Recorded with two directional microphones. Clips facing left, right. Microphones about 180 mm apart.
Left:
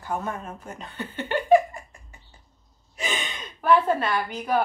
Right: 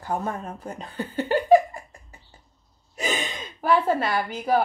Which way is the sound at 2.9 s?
40° right (ahead or behind).